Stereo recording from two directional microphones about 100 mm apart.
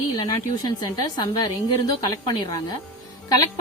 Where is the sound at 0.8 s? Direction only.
45° left (ahead or behind).